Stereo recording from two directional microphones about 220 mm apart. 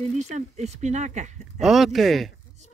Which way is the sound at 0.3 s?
30° right (ahead or behind).